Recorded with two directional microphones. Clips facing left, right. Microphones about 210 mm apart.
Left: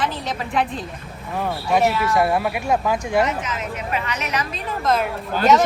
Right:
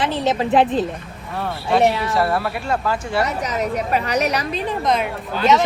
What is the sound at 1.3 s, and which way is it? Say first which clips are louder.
Speech: even; 15° left (ahead or behind).